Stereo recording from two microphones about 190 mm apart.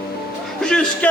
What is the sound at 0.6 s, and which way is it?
Speech, 5° left (ahead or behind).